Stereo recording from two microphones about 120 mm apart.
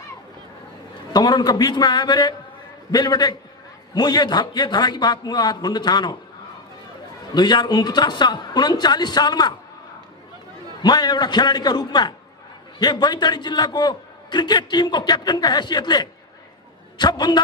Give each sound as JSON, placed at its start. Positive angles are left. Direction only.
{"t": 1.1, "sound": "a man's voice", "side_deg": 35}
{"t": 7.3, "sound": "a man's voice", "side_deg": 40}
{"t": 10.8, "sound": "a man's voice", "side_deg": 35}